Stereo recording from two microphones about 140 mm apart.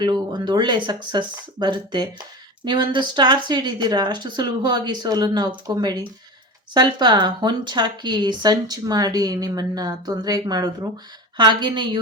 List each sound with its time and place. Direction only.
0.0 s speech: 30° right (ahead or behind)